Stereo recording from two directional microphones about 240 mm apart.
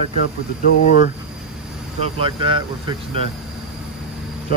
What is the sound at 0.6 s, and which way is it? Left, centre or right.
Speech, left.